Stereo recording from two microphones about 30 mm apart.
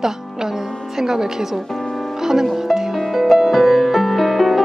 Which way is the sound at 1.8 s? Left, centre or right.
Centre.